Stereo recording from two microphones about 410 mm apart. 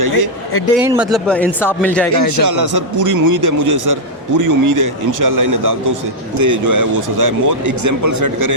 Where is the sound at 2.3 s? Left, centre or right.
Right.